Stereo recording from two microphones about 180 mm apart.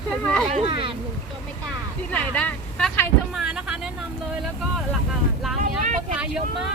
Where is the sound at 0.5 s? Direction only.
30° right (ahead or behind).